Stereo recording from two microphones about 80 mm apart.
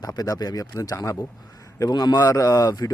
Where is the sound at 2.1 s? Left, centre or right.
Left.